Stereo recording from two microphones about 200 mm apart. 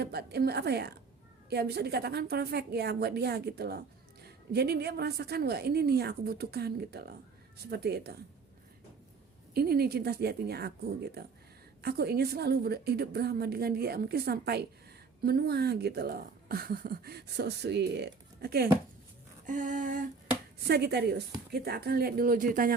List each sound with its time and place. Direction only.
0.0 s a woman's voice: 55° right (ahead or behind)
9.6 s speech: 50° right (ahead or behind)
19.5 s a sound: 40° right (ahead or behind)
20.7 s a woman's voice: 55° right (ahead or behind)